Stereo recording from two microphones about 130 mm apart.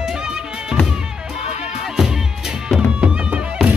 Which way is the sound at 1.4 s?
55° left (ahead or behind).